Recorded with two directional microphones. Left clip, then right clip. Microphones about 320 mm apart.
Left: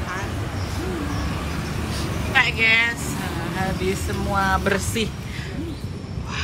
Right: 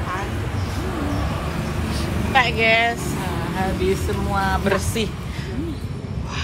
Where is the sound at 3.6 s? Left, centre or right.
Centre.